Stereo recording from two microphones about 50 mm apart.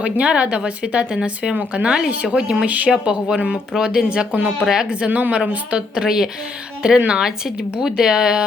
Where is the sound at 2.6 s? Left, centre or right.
Right.